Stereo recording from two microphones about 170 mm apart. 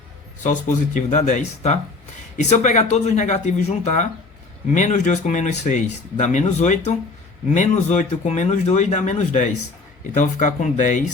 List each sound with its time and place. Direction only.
0.4 s speech: 50° left (ahead or behind)